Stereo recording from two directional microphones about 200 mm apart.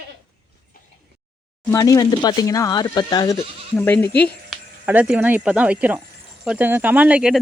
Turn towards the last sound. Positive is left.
turn(degrees=-5)  # may be behind; listen again after turning